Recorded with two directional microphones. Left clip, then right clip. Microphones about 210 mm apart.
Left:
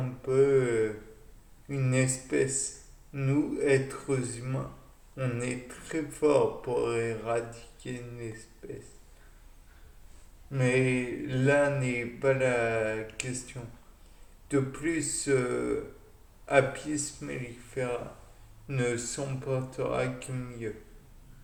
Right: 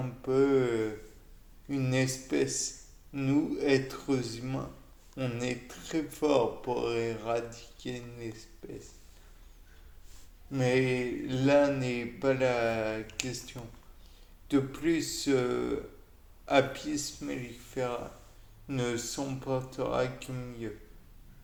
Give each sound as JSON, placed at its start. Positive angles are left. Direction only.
{"t": 0.3, "sound": "a sound", "side_deg": -35}
{"t": 1.6, "sound": "speech", "side_deg": -35}
{"t": 10.5, "sound": "speech", "side_deg": -35}
{"t": 17.2, "sound": "speech", "side_deg": -35}
{"t": 18.7, "sound": "speech", "side_deg": -40}